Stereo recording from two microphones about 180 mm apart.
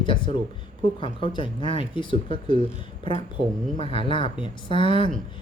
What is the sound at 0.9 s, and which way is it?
Speech, 30° left (ahead or behind).